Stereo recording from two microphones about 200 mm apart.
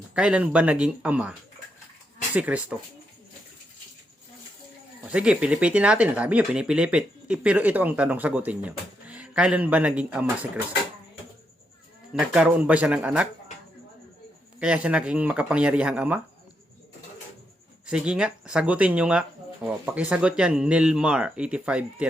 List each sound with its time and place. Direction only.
0.1 s speech: 5° right (ahead or behind)
5.1 s speech: 5° right (ahead or behind)
12.1 s speech: 5° right (ahead or behind)
14.6 s speech: 5° right (ahead or behind)
17.8 s speech: 5° right (ahead or behind)